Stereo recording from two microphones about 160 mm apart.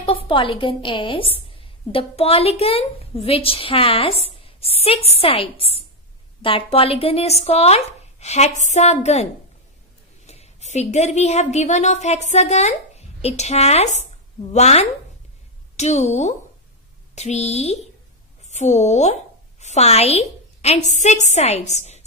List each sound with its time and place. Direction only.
0.0 s a woman's voice: 35° left (ahead or behind)
4.4 s a sound: 35° left (ahead or behind)
4.8 s a woman's voice: 40° left (ahead or behind)